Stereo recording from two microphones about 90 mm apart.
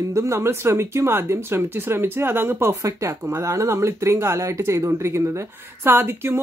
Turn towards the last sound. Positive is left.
turn(degrees=-25)  # may be behind; listen again after turning